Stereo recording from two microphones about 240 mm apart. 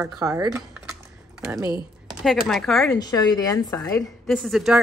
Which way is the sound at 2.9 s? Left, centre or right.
Centre.